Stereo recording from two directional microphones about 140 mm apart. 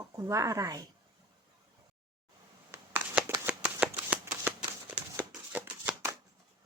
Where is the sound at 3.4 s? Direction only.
10° right (ahead or behind).